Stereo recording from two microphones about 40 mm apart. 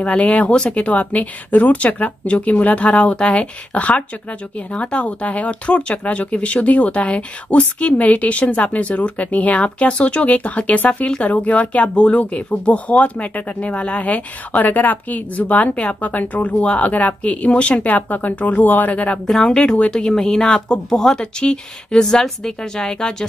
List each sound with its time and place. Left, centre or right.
0.0 s speech: left
19.4 s speech: left